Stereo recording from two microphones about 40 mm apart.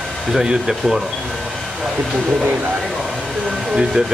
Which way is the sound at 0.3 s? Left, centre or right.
Centre.